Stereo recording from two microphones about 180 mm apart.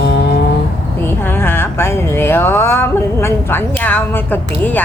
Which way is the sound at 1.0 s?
10° left (ahead or behind).